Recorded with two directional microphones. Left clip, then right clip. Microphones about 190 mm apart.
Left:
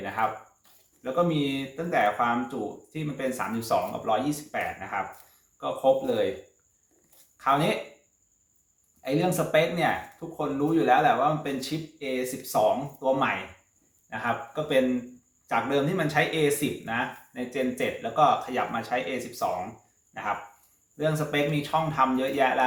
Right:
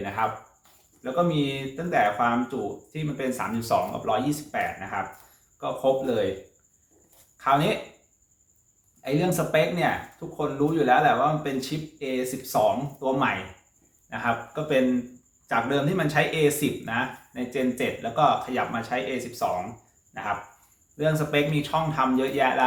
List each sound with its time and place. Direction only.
1.0 s speech: centre (ahead or behind)
7.3 s speech: centre (ahead or behind)
9.0 s speech: centre (ahead or behind)